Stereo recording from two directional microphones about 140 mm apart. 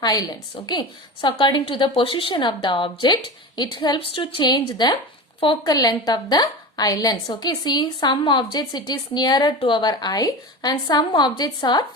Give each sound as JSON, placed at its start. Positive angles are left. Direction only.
{"t": 0.0, "sound": "a woman's voice", "side_deg": 30}